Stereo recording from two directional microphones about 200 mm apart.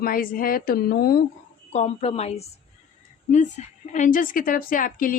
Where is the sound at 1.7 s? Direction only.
30° left (ahead or behind).